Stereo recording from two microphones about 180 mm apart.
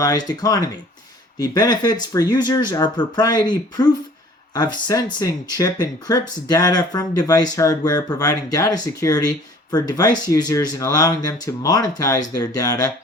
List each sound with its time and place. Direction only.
0.0 s speech: 20° left (ahead or behind)